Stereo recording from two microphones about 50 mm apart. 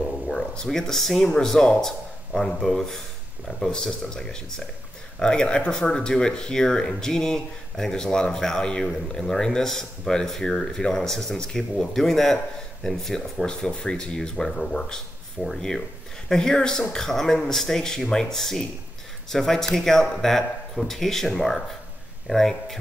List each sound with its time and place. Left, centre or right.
0.3 s speech: centre
13.5 s speech: centre